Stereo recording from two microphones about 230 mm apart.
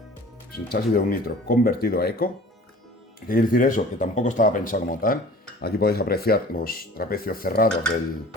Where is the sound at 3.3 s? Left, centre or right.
Left.